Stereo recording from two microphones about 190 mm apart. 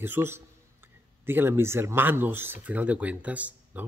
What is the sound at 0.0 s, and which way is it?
Speech, 10° right (ahead or behind).